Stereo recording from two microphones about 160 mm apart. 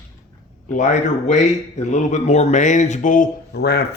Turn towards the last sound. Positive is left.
turn(degrees=90)